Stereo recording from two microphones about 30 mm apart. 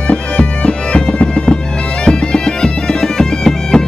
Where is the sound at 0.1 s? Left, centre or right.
Left.